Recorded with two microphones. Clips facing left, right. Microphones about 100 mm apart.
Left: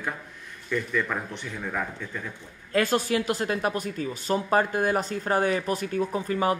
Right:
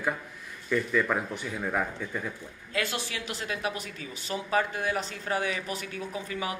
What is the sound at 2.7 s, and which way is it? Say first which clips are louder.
Speech: left 9 dB; 45° left (ahead or behind).